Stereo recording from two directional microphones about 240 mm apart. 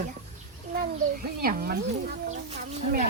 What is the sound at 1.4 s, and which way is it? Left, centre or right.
Speech, right.